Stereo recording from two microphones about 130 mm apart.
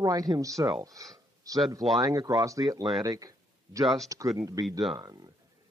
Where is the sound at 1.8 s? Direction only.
Centre (ahead or behind).